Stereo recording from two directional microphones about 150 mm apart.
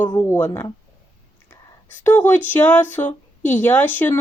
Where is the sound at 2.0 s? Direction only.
10° left (ahead or behind).